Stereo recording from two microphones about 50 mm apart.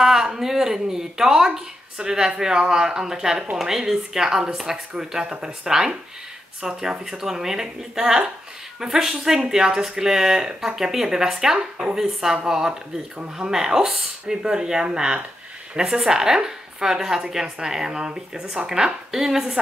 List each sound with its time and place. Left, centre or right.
0.0 s a woman's voice: centre